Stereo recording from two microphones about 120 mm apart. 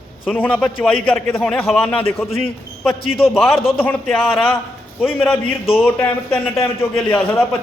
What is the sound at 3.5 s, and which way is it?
Speech, 50° left (ahead or behind).